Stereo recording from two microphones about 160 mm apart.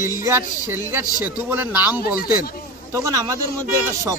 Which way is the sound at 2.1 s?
65° left (ahead or behind).